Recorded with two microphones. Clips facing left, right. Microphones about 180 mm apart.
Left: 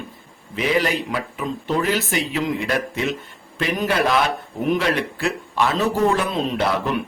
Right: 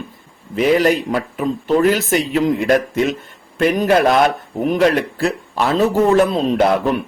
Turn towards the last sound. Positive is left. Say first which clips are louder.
# right 6 dB
turn(degrees=-45)  # may be behind; listen again after turning